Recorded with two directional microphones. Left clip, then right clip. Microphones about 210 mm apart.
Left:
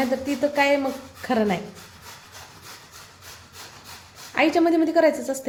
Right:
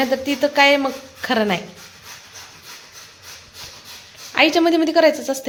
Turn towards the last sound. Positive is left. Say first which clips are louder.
# right 4 dB
turn(degrees=0)  # may be behind; listen again after turning